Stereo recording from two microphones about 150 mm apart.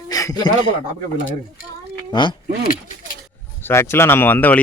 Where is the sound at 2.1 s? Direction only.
30° left (ahead or behind).